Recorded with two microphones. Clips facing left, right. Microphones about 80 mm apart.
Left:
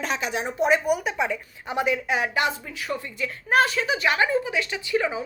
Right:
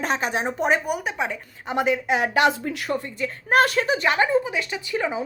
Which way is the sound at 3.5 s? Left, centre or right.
Right.